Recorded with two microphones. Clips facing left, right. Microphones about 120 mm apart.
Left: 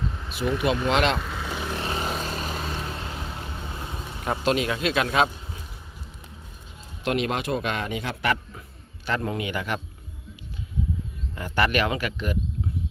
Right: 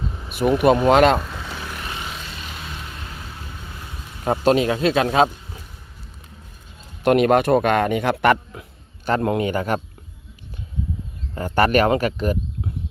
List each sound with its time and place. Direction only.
0.1 s vehicle: 10° right (ahead or behind)
0.9 s speech: 45° right (ahead or behind)
1.3 s vehicle: centre (ahead or behind)
1.5 s vehicle: 25° left (ahead or behind)
4.2 s speech: 35° right (ahead or behind)
7.0 s speech: 50° right (ahead or behind)
11.3 s speech: 40° right (ahead or behind)